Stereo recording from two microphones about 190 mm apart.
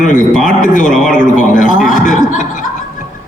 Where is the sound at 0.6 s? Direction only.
45° left (ahead or behind).